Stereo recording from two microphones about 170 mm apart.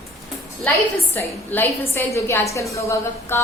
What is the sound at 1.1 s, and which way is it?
A woman's voice, 10° left (ahead or behind).